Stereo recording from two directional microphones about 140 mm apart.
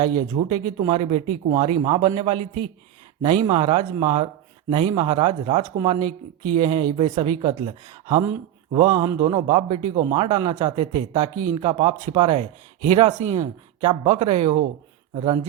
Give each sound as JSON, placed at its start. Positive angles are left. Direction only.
{"t": 0.0, "sound": "speech", "side_deg": -30}
{"t": 13.1, "sound": "speech", "side_deg": -60}
{"t": 13.8, "sound": "speech", "side_deg": -45}